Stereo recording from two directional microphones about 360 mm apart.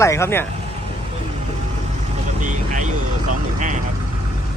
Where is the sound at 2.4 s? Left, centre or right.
Right.